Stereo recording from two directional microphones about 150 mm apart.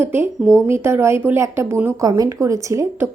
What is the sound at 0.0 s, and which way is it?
A woman's voice, 15° right (ahead or behind).